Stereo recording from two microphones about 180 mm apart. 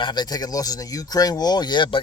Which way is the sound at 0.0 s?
25° left (ahead or behind).